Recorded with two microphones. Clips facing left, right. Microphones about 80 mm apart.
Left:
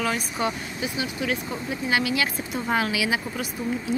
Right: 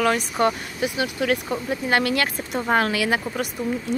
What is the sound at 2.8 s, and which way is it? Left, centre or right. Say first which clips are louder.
Speech: right 3 dB; right.